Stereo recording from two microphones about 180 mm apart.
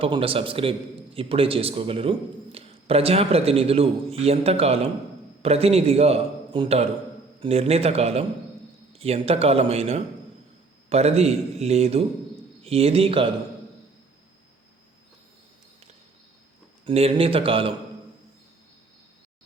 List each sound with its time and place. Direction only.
0.0 s a man's voice: 30° right (ahead or behind)
16.8 s a man's voice: 35° right (ahead or behind)